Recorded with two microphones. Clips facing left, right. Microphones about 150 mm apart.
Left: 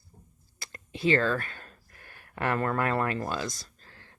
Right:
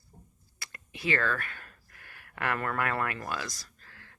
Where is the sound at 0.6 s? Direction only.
30° left (ahead or behind).